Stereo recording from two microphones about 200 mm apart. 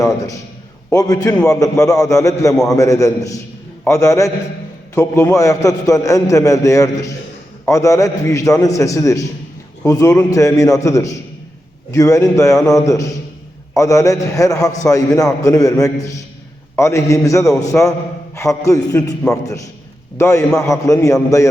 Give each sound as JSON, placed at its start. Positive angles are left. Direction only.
{"t": 0.9, "sound": "a man's voice", "side_deg": 20}